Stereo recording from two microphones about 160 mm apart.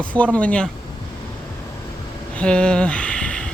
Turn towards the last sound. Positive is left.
turn(degrees=5)  # may be behind; listen again after turning